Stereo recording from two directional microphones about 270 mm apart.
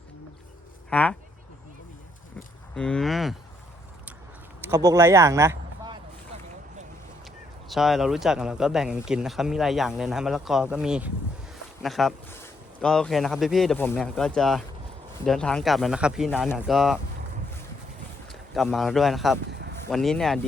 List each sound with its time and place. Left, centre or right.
0.9 s speech: centre
2.7 s speech: centre
4.7 s speech: centre
7.7 s speech: centre
18.3 s speech: centre